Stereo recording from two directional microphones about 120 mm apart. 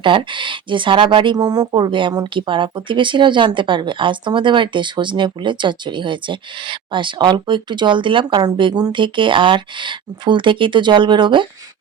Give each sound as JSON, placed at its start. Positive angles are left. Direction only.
{"t": 0.0, "sound": "speech", "side_deg": -45}